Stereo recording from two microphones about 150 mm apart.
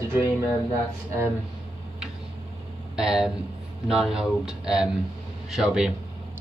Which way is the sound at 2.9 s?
5° right (ahead or behind).